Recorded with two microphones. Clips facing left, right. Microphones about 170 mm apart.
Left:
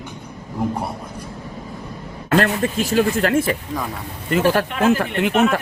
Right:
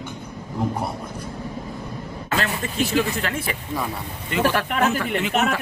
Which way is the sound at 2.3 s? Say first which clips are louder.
Left 8 dB; 55° left (ahead or behind).